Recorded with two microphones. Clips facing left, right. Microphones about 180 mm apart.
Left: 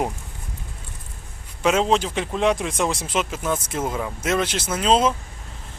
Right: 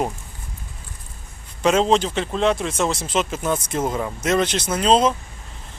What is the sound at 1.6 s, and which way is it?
Speech, 5° left (ahead or behind).